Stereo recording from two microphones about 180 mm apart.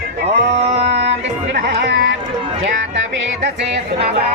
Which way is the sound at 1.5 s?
65° right (ahead or behind).